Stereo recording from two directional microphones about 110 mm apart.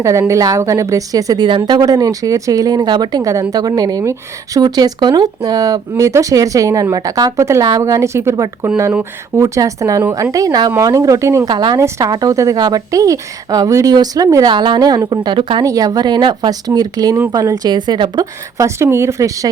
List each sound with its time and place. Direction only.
0.0 s a woman's voice: 25° right (ahead or behind)
11.4 s a woman's voice: 40° right (ahead or behind)
14.5 s a woman's voice: 45° right (ahead or behind)
15.6 s a woman's voice: 35° right (ahead or behind)
18.5 s speech: 25° right (ahead or behind)